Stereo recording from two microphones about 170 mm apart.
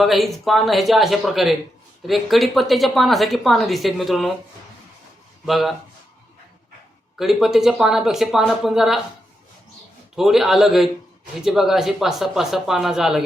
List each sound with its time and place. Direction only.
0.0 s a woman's voice: centre (ahead or behind)
5.5 s a woman's voice: centre (ahead or behind)
7.2 s a woman's voice: centre (ahead or behind)
10.2 s a woman's voice: centre (ahead or behind)